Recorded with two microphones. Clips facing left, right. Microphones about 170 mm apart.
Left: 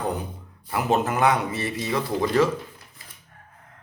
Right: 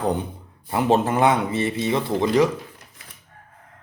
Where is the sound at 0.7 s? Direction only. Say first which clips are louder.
Right 4 dB; 30° right (ahead or behind).